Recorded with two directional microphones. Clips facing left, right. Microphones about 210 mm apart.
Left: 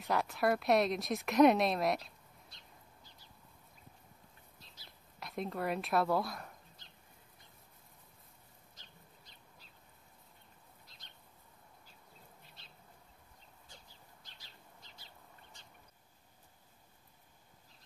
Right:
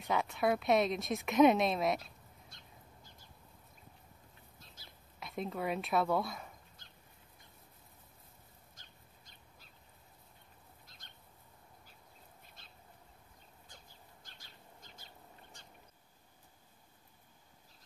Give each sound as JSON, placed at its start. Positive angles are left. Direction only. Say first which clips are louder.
{"t": 0.0, "sound": "a woman's voice", "louder": "even", "side_deg": 0}
{"t": 2.5, "sound": "bird", "louder": "right 2 dB", "side_deg": -50}
{"t": 4.8, "sound": "a sound", "louder": "right 1 dB", "side_deg": -50}
{"t": 5.2, "sound": "a woman's voice", "louder": "even", "side_deg": 0}
{"t": 12.6, "sound": "bird", "louder": "even", "side_deg": -50}
{"t": 14.2, "sound": "bird", "louder": "right 1 dB", "side_deg": -50}